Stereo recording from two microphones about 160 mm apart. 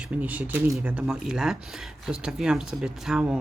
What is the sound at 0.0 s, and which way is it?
Speech, 10° right (ahead or behind).